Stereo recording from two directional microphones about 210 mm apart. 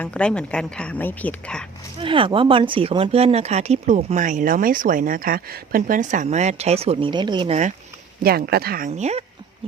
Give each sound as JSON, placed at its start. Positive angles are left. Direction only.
{"t": 0.0, "sound": "a woman's voice", "side_deg": 5}
{"t": 2.0, "sound": "speech", "side_deg": -25}
{"t": 8.2, "sound": "speech", "side_deg": -45}
{"t": 8.9, "sound": "speech", "side_deg": -30}